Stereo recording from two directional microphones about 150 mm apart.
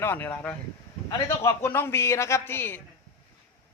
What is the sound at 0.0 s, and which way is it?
A man's voice, 15° left (ahead or behind).